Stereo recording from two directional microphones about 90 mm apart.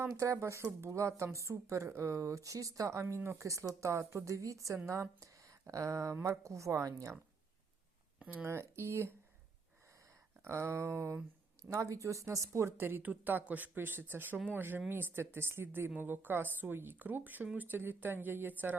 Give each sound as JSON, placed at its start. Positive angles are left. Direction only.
{"t": 0.1, "sound": "speech", "side_deg": -35}
{"t": 8.4, "sound": "speech", "side_deg": -30}
{"t": 10.4, "sound": "a woman's voice", "side_deg": -30}